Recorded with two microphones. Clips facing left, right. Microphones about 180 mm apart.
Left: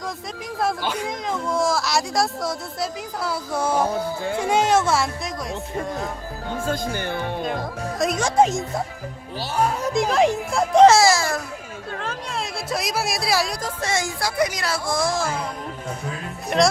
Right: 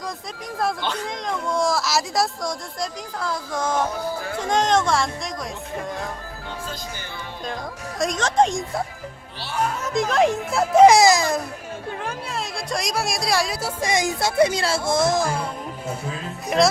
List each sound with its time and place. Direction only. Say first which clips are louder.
0.6 s speech: left 1 dB; 10° left (ahead or behind)
3.8 s speech: left 3 dB; 25° left (ahead or behind)
4.4 s speech: left 1 dB; 10° left (ahead or behind)
6.7 s speech: left 9 dB; 55° left (ahead or behind)
7.9 s speech: left 1 dB; 5° left (ahead or behind)
9.9 s speech: right 1 dB; centre (ahead or behind); by 11.3 s 20° right (ahead or behind)
11.9 s chatter: even; 15° right (ahead or behind)
12.3 s speech: left 2 dB; centre (ahead or behind)
16.5 s speech: even; centre (ahead or behind)